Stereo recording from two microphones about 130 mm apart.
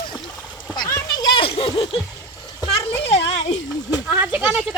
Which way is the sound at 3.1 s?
55° left (ahead or behind).